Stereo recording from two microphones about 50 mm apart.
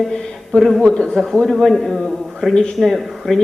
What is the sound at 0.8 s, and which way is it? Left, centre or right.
Speech, left.